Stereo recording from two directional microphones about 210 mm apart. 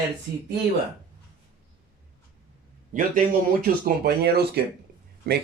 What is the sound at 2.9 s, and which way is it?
Speech, 40° right (ahead or behind).